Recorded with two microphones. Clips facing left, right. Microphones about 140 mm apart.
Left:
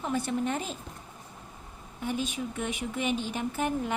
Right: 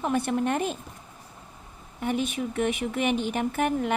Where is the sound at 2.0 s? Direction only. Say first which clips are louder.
Right 4 dB; 60° right (ahead or behind).